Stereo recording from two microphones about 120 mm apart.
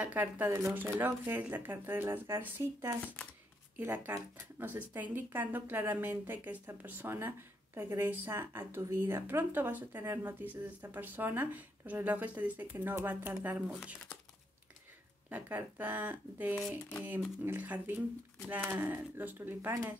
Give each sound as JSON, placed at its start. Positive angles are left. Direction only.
{"t": 0.0, "sound": "a woman's voice", "side_deg": -15}
{"t": 15.2, "sound": "a woman's voice", "side_deg": -15}